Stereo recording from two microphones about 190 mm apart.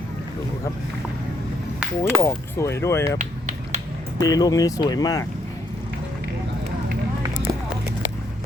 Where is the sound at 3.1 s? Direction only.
40° right (ahead or behind).